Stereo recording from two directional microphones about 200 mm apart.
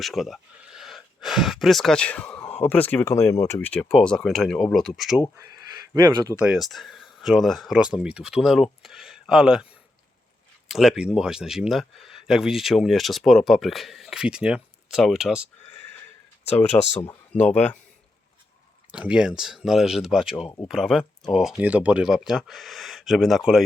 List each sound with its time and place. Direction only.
0.0 s speech: centre (ahead or behind)
5.4 s speech: 15° right (ahead or behind)
6.3 s speech: 5° right (ahead or behind)
10.7 s speech: centre (ahead or behind)
16.7 s speech: 20° left (ahead or behind)
17.3 s speech: 35° left (ahead or behind)
18.9 s speech: 5° right (ahead or behind)